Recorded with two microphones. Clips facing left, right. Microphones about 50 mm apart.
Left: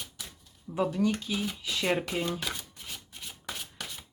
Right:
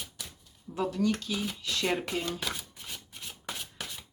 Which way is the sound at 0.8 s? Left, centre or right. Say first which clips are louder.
Left 1 dB; centre.